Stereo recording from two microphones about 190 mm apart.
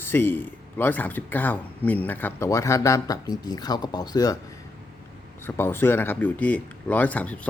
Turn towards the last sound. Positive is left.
turn(degrees=10)  # may be behind; listen again after turning